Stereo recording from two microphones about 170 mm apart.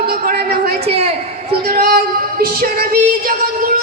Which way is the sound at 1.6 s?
60° right (ahead or behind).